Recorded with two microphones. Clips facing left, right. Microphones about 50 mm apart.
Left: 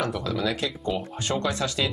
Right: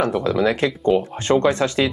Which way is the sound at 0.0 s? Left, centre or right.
Right.